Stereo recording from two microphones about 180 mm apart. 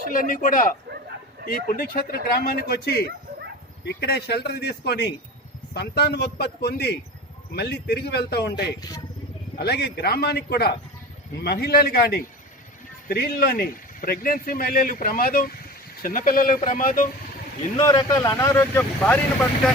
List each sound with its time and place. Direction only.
0.1 s speech: 50° left (ahead or behind)
17.7 s speech: 20° left (ahead or behind)